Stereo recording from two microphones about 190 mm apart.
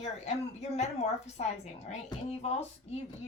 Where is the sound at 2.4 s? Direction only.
35° left (ahead or behind).